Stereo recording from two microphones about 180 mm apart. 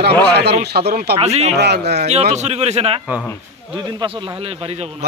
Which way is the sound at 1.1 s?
35° right (ahead or behind).